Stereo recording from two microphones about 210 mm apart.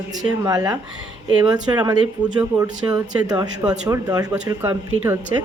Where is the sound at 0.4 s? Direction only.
20° right (ahead or behind).